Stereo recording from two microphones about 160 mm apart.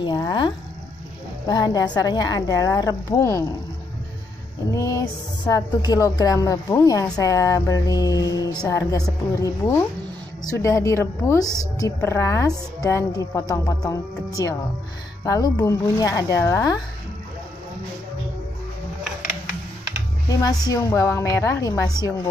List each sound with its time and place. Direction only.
0.0 s a woman's voice: 25° left (ahead or behind)
1.5 s a woman's voice: 25° left (ahead or behind)
4.7 s music: 20° left (ahead or behind)
5.5 s a woman's voice: 25° left (ahead or behind)
20.2 s a woman's voice: 25° left (ahead or behind)